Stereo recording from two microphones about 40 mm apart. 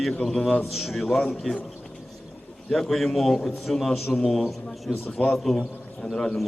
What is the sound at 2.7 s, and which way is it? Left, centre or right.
A man's voice, centre.